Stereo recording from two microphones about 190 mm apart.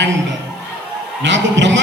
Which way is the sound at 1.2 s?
70° right (ahead or behind).